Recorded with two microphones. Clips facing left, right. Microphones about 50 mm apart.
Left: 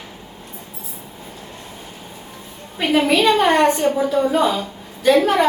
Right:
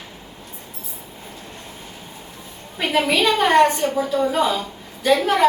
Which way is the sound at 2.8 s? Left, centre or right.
Centre.